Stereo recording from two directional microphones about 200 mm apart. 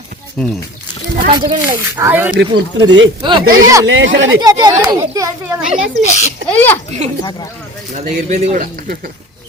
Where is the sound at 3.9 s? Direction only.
65° right (ahead or behind).